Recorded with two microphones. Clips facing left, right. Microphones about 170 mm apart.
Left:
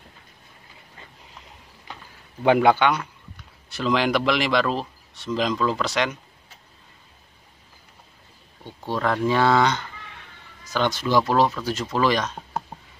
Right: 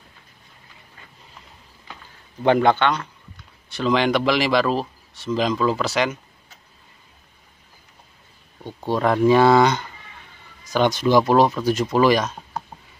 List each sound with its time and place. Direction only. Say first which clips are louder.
2.4 s speech: even; 5° left (ahead or behind)
8.8 s speech: right 5 dB; 15° right (ahead or behind)